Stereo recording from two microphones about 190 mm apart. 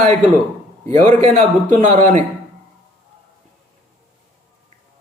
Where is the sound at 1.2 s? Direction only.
40° right (ahead or behind).